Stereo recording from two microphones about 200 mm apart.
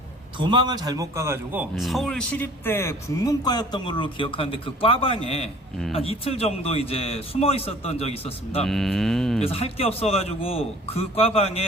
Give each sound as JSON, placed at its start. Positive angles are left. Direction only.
{"t": 0.3, "sound": "a man's voice", "side_deg": -25}
{"t": 1.7, "sound": "speech", "side_deg": 0}
{"t": 8.6, "sound": "cattle", "side_deg": 0}
{"t": 9.4, "sound": "speech", "side_deg": 30}